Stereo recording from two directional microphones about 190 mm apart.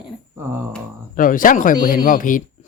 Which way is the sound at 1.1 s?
45° left (ahead or behind).